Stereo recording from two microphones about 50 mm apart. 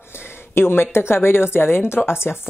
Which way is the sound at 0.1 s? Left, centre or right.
Left.